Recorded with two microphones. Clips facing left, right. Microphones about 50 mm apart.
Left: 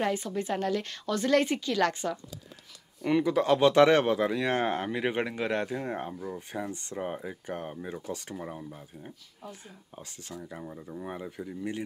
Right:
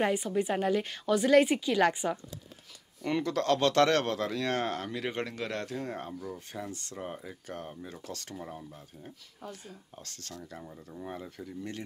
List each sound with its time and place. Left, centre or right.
0.0 s a woman's voice: centre
3.0 s speech: centre